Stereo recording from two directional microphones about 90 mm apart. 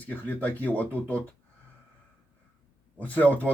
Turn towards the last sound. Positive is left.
turn(degrees=15)  # may be behind; listen again after turning